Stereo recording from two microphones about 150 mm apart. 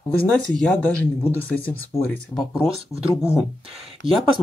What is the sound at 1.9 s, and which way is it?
Speech, 15° left (ahead or behind).